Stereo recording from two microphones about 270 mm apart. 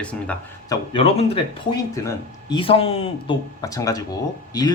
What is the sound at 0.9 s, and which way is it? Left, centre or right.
Speech, left.